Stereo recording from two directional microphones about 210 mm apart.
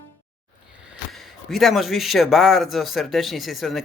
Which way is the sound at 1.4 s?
Centre (ahead or behind).